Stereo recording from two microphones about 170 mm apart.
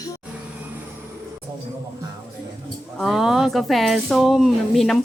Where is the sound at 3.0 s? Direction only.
Centre (ahead or behind).